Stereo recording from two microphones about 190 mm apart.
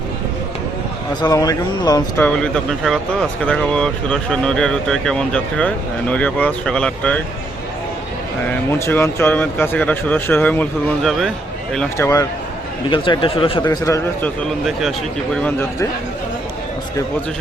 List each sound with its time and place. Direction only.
1.2 s speech: 20° left (ahead or behind)
2.2 s speech: 5° left (ahead or behind)
8.4 s speech: 10° left (ahead or behind)
12.9 s speech: 25° left (ahead or behind)
14.4 s speech: centre (ahead or behind)